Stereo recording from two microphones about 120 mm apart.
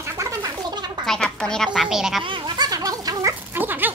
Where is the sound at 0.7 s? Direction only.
35° right (ahead or behind).